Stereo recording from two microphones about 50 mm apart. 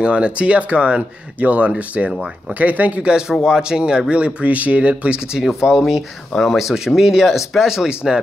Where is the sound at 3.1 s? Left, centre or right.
Centre.